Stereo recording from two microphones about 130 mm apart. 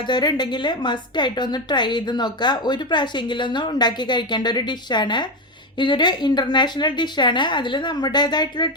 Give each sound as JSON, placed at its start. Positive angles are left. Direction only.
{"t": 0.0, "sound": "a woman's voice", "side_deg": 35}